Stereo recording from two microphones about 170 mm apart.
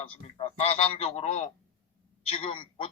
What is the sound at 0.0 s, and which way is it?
A man's voice, 35° left (ahead or behind).